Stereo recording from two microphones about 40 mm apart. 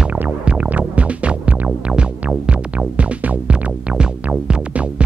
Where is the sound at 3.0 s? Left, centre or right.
Right.